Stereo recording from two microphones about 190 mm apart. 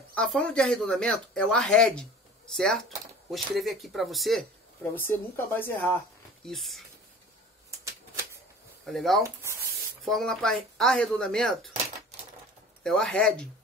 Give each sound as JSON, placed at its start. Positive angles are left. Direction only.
{"t": 0.1, "sound": "speech", "side_deg": 5}
{"t": 4.9, "sound": "a woman's voice", "side_deg": 10}
{"t": 7.8, "sound": "typewriter", "side_deg": -15}
{"t": 8.8, "sound": "speech", "side_deg": 0}
{"t": 9.2, "sound": "speech", "side_deg": -15}
{"t": 10.0, "sound": "speech", "side_deg": 0}
{"t": 12.8, "sound": "speech", "side_deg": 0}